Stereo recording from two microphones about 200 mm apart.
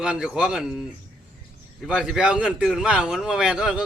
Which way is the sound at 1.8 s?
Centre (ahead or behind).